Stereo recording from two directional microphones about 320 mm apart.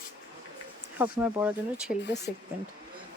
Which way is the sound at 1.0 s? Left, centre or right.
Centre.